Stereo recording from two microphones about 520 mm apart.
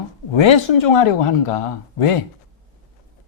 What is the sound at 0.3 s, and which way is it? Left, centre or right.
Speech, left.